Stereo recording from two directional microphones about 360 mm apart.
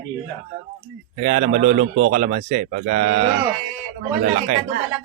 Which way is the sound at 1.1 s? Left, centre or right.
Right.